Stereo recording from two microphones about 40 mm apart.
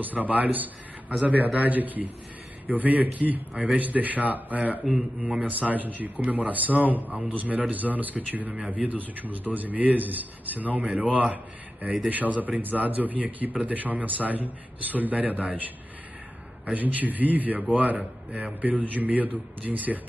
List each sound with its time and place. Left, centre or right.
0.0 s a man's voice: right
9.0 s a man's voice: right
16.7 s a man's voice: right